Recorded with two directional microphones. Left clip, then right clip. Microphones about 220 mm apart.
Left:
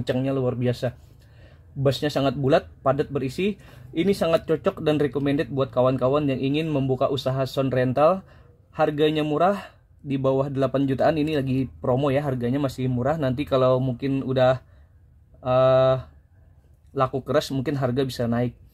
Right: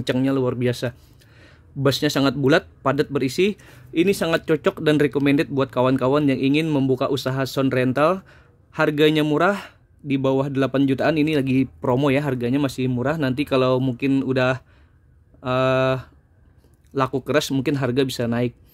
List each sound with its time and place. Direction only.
0.0 s speech: 45° right (ahead or behind)